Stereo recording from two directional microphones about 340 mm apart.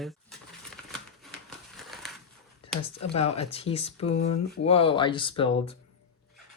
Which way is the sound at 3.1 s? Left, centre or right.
Centre.